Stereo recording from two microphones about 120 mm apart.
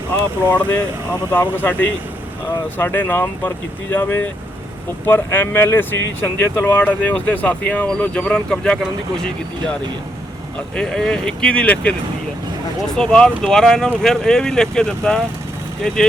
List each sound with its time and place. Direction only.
0.1 s speech: 15° left (ahead or behind)
10.8 s speech: 5° left (ahead or behind)
13.0 s speech: 5° left (ahead or behind)